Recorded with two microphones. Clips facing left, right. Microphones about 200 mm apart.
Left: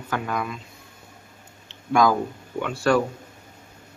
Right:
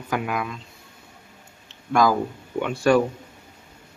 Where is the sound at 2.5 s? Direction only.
15° right (ahead or behind).